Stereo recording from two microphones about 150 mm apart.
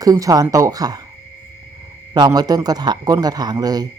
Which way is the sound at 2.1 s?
25° right (ahead or behind).